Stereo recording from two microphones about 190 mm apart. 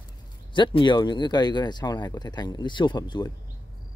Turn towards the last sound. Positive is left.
turn(degrees=20)  # may be behind; listen again after turning